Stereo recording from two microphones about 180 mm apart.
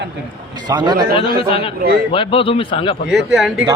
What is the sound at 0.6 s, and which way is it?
Speech, 25° right (ahead or behind).